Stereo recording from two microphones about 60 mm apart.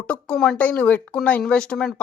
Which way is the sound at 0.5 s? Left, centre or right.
Left.